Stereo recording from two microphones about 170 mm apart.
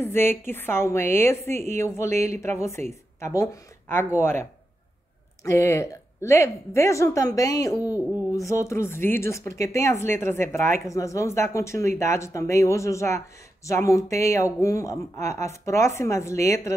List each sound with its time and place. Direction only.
0.0 s speech: 15° left (ahead or behind)